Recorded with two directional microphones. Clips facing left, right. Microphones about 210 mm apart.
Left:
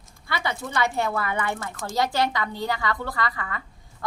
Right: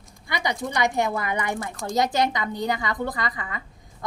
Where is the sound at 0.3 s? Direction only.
15° right (ahead or behind).